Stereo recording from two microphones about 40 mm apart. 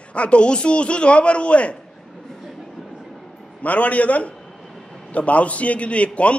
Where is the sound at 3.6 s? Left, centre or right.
Left.